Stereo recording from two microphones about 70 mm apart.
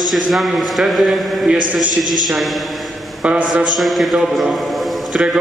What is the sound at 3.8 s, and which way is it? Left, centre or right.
A man's voice, centre.